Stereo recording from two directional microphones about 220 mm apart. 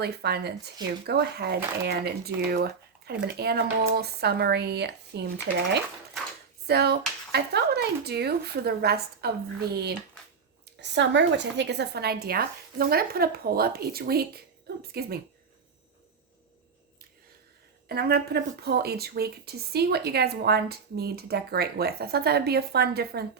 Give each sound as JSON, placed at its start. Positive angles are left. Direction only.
{"t": 0.0, "sound": "speech", "side_deg": -45}
{"t": 6.7, "sound": "speech", "side_deg": -45}
{"t": 17.8, "sound": "speech", "side_deg": -45}